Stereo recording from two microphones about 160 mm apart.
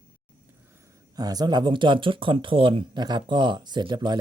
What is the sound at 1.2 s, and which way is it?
Speech, 25° right (ahead or behind).